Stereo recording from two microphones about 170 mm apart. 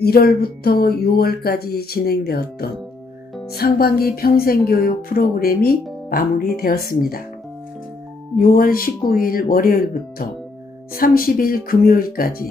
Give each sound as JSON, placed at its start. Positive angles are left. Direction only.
{"t": 0.0, "sound": "speech", "side_deg": 65}
{"t": 8.4, "sound": "speech", "side_deg": 60}